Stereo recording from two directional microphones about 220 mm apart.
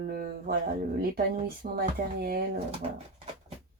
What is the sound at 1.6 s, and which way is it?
Speech, 35° right (ahead or behind).